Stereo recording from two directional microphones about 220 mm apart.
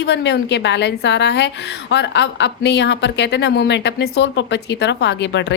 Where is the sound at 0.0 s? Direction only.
50° left (ahead or behind).